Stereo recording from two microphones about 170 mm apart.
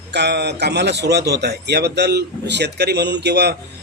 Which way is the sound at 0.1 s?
85° right.